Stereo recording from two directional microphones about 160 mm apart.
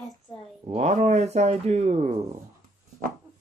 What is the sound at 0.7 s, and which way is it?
Speech, 45° right (ahead or behind).